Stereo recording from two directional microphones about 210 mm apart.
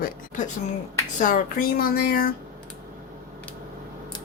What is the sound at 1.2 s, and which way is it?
Speech, 40° left (ahead or behind).